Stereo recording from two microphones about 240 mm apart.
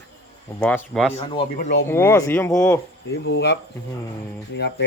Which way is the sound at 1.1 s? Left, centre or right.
Left.